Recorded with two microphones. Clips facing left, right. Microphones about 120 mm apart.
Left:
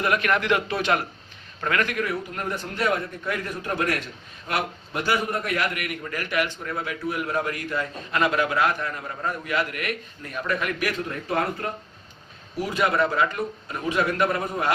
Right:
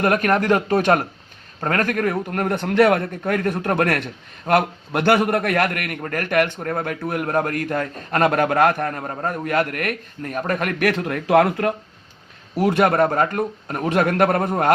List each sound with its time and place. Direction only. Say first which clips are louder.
0.0 s a man's voice: right 5 dB; 45° right (ahead or behind); by 11.7 s 85° right
12.5 s a man's voice: right 6 dB; 60° right (ahead or behind)